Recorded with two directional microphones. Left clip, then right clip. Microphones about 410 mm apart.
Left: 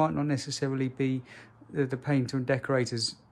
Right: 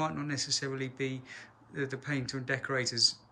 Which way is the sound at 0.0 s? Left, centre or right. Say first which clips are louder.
Left 6 dB; centre.